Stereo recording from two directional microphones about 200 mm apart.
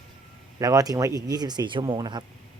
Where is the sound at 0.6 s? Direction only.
15° right (ahead or behind).